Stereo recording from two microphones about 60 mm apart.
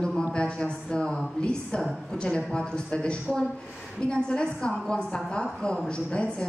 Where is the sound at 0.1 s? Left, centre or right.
Centre.